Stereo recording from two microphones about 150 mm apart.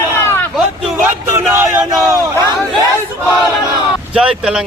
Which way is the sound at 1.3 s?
15° right (ahead or behind).